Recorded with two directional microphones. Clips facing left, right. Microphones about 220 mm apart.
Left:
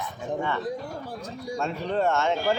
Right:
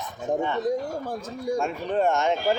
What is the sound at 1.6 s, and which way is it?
Speech, 15° right (ahead or behind).